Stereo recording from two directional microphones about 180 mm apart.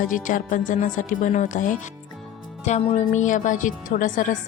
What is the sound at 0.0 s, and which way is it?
A woman's voice, 45° left (ahead or behind).